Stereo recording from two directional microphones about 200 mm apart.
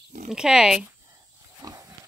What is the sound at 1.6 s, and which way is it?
Pig, 15° right (ahead or behind).